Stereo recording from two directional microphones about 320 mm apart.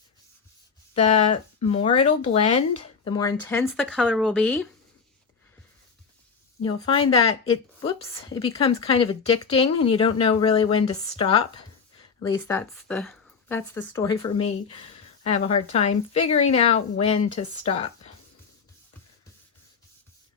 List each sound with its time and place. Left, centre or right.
0.9 s speech: centre
6.8 s speech: centre